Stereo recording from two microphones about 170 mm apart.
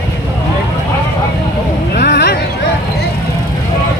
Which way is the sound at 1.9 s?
80° left.